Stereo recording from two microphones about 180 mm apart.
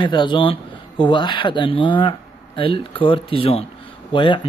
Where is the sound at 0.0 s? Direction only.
25° left (ahead or behind).